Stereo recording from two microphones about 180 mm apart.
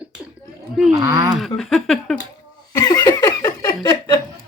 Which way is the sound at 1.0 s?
20° right (ahead or behind).